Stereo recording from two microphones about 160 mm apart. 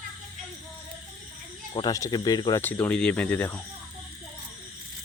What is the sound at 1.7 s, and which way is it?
Speech, 25° left (ahead or behind).